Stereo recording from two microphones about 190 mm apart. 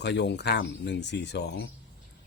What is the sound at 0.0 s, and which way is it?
Speech, 65° left (ahead or behind).